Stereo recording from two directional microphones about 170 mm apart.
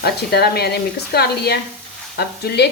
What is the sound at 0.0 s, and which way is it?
Speech, 70° left (ahead or behind).